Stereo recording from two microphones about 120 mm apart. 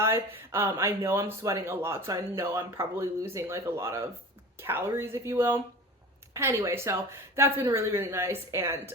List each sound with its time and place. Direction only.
0.0 s speech: 20° right (ahead or behind)